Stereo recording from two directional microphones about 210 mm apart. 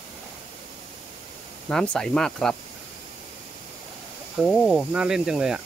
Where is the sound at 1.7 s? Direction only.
5° left (ahead or behind).